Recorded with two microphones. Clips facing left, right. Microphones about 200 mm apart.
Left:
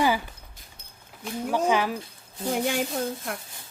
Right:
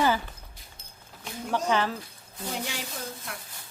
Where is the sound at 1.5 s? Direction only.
10° left (ahead or behind).